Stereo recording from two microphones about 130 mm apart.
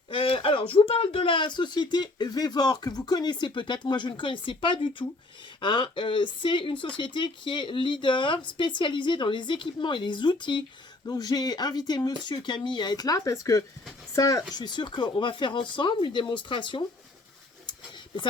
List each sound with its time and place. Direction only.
0.1 s speech: 45° left (ahead or behind)